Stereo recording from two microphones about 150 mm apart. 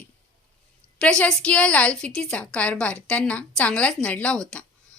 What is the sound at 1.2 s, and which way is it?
A woman's voice, 5° left (ahead or behind).